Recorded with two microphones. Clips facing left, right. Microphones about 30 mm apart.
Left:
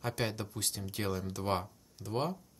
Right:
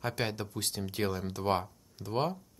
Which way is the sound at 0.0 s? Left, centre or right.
Centre.